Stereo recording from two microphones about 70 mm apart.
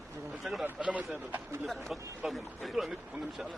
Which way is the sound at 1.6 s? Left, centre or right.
Centre.